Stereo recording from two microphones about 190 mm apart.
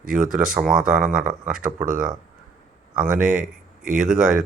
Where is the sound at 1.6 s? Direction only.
45° right (ahead or behind).